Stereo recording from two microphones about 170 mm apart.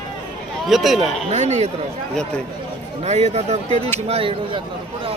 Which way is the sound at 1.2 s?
40° right (ahead or behind).